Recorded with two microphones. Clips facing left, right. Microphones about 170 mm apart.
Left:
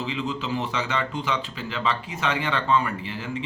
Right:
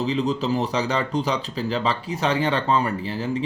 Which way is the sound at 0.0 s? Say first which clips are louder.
Right 6 dB; 40° right (ahead or behind).